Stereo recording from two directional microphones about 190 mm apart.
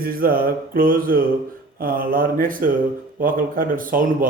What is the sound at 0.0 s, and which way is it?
Speech, 50° right (ahead or behind).